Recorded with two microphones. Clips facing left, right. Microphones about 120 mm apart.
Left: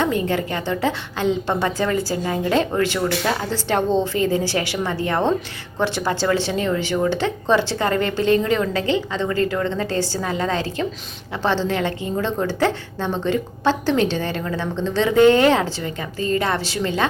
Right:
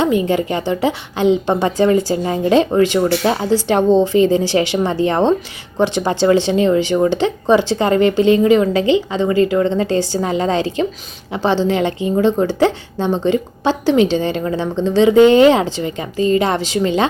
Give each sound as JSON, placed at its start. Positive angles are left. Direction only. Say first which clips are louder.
{"t": 0.0, "sound": "a woman's voice", "louder": "right 5 dB", "side_deg": -15}